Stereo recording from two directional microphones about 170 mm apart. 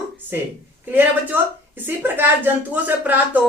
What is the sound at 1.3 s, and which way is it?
Speech, 10° right (ahead or behind).